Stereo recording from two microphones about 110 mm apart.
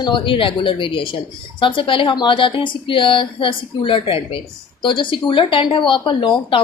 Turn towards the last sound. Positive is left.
turn(degrees=45)  # may be behind; listen again after turning